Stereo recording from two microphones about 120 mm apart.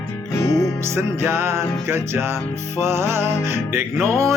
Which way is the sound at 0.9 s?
20° right (ahead or behind).